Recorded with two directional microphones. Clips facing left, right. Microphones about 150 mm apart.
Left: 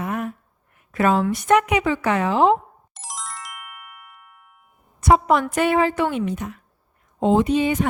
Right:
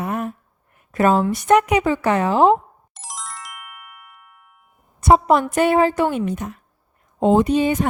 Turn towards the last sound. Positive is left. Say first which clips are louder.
# right 2 dB
turn(degrees=-40)  # may be behind; listen again after turning